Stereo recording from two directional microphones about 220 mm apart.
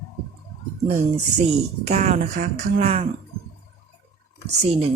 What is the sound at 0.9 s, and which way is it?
A woman's voice, 30° right (ahead or behind).